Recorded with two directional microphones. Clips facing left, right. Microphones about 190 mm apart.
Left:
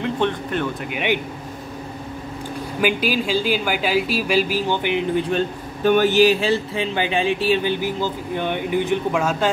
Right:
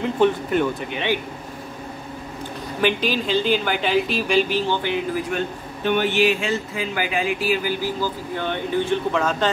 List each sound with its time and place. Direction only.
0.0 s speech: 10° right (ahead or behind)
0.9 s speech: 15° left (ahead or behind)
2.8 s speech: 10° left (ahead or behind)
4.8 s speech: 25° left (ahead or behind)
5.9 s speech: 40° left (ahead or behind); by 9.5 s 10° left (ahead or behind)